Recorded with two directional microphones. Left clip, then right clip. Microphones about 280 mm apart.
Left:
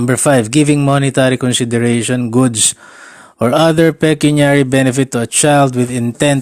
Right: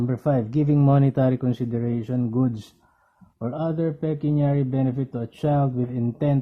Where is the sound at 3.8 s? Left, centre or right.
Left.